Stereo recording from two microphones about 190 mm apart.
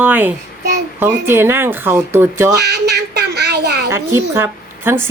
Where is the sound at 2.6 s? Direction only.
60° right (ahead or behind).